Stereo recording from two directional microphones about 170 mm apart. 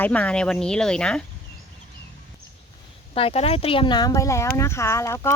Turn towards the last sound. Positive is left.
turn(degrees=15)  # may be behind; listen again after turning